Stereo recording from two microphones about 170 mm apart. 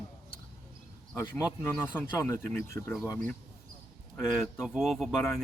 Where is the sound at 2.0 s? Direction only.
15° left (ahead or behind).